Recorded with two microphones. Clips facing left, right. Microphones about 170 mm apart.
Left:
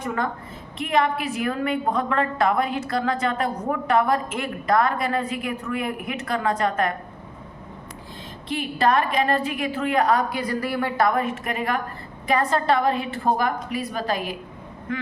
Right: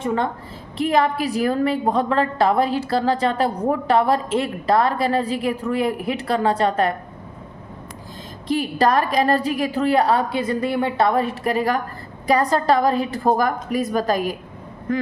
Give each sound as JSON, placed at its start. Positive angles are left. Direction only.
{"t": 0.0, "sound": "a woman's voice", "side_deg": -25}
{"t": 8.4, "sound": "a woman's voice", "side_deg": -40}